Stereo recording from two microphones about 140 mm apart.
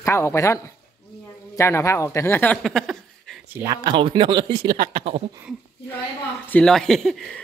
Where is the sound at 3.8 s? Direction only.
35° right (ahead or behind).